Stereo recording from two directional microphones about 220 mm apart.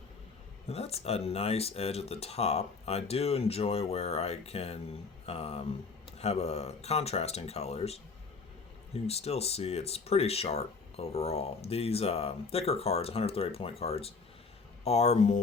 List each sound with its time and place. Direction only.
0.7 s speech: 30° left (ahead or behind)